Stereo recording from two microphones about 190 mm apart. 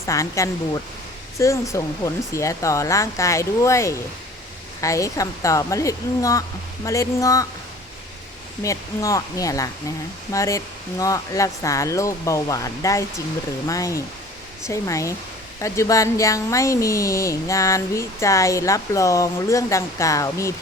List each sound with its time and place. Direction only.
0.0 s speech: 15° left (ahead or behind)
8.6 s speech: 15° left (ahead or behind)